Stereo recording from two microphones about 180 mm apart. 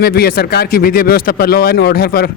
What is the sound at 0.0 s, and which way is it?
Speech, 60° left (ahead or behind).